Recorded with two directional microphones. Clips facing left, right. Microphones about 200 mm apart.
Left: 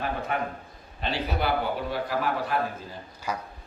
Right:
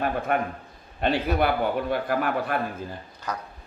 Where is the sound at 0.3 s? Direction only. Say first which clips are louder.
Right 4 dB; 55° right (ahead or behind).